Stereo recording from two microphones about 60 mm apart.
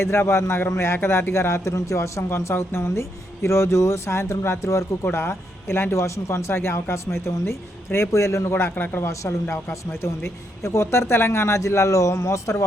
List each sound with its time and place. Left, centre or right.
0.0 s speech: left
8.7 s speech: left
9.0 s speech: left